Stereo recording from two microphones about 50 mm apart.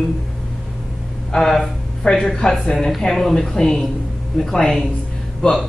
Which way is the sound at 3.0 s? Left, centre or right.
Left.